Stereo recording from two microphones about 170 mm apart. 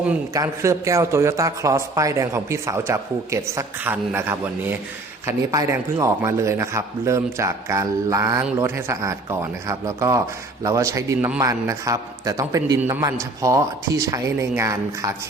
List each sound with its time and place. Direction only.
0.3 s a man's voice: 20° right (ahead or behind)